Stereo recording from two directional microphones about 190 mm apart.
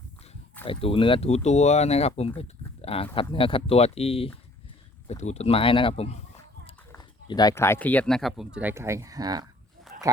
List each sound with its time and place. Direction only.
0.6 s speech: 30° left (ahead or behind)
7.3 s speech: 20° left (ahead or behind); by 8.4 s centre (ahead or behind)
8.5 s speech: 10° right (ahead or behind)
9.9 s dog: 50° right (ahead or behind)